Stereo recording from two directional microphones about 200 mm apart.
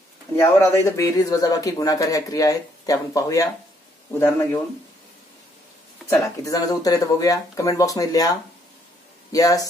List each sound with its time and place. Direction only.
0.4 s speech: 15° left (ahead or behind)
6.0 s speech: 15° left (ahead or behind)